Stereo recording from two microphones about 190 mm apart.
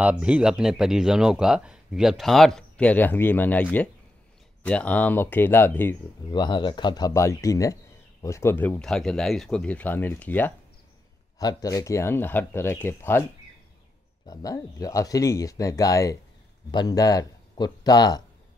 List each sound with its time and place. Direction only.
0.0 s speech: 5° right (ahead or behind); by 3.6 s 10° left (ahead or behind)
4.6 s speech: 5° left (ahead or behind)
6.3 s speech: 25° left (ahead or behind)
14.2 s speech: 20° left (ahead or behind)